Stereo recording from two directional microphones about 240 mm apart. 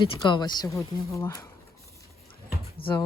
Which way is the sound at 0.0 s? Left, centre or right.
Centre.